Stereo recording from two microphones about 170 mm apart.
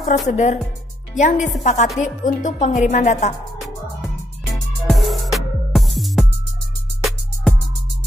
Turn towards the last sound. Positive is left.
turn(degrees=0)  # may be behind; listen again after turning